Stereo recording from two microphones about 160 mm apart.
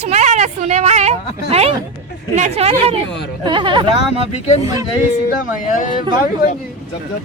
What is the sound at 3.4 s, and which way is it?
Speech, 30° right (ahead or behind).